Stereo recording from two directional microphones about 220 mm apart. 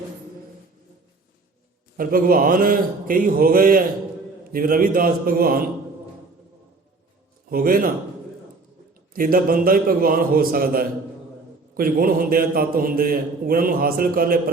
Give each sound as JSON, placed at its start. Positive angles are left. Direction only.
{"t": 2.0, "sound": "a man's voice", "side_deg": -40}
{"t": 7.5, "sound": "a man's voice", "side_deg": -40}
{"t": 9.1, "sound": "a man's voice", "side_deg": -40}